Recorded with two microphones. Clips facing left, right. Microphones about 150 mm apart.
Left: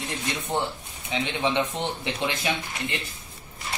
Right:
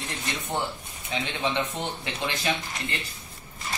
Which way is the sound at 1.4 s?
20° left (ahead or behind).